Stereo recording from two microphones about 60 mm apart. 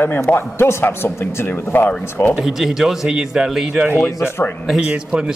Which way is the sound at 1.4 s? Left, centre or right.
Left.